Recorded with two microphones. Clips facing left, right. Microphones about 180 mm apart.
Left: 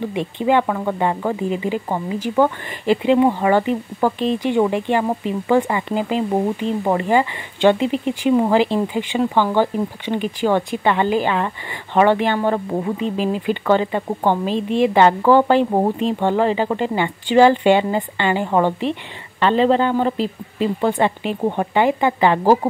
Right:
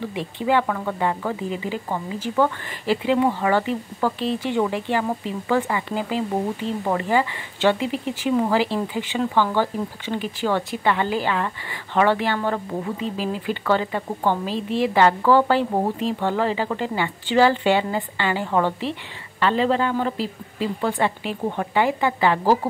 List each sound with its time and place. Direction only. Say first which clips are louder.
0.0 s speech: left 5 dB; 20° left (ahead or behind)